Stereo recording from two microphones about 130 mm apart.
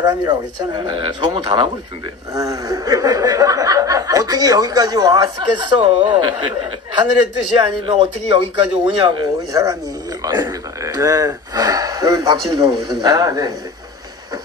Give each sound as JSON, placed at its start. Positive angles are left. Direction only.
{"t": 0.0, "sound": "speech", "side_deg": -30}
{"t": 2.3, "sound": "speech", "side_deg": -25}
{"t": 8.8, "sound": "speech", "side_deg": -35}